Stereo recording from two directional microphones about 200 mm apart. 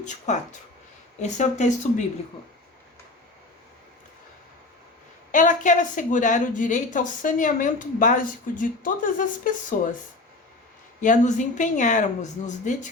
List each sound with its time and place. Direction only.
0.0 s a woman's voice: 35° left (ahead or behind)
5.3 s a woman's voice: 40° left (ahead or behind)
11.0 s a woman's voice: 40° left (ahead or behind)